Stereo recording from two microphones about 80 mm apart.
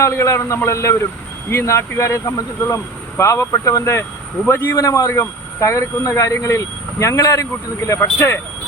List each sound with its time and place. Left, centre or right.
0.0 s speech: left
4.4 s a man's voice: left
4.7 s speech: left